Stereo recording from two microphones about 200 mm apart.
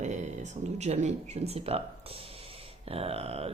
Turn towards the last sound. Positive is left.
turn(degrees=-30)  # may be behind; listen again after turning